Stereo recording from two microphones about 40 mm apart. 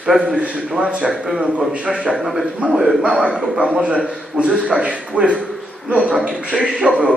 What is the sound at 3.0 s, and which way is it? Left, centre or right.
A man's voice, right.